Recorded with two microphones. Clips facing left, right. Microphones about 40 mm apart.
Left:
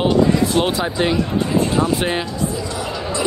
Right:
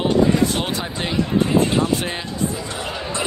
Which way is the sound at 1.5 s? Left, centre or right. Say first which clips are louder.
Even; right.